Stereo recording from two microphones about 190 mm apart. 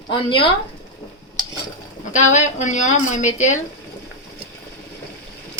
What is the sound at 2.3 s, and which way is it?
A woman's voice, 40° left (ahead or behind).